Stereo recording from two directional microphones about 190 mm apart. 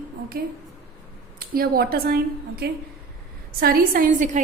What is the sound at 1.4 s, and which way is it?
A woman's voice, 50° right (ahead or behind).